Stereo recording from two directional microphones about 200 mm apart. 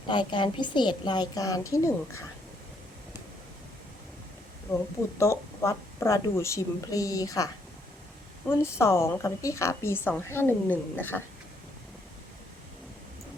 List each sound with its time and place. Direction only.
0.1 s a woman's voice: 25° left (ahead or behind)
5.1 s a woman's voice: 15° left (ahead or behind)